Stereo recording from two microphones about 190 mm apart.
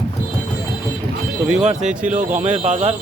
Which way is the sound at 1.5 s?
35° right (ahead or behind).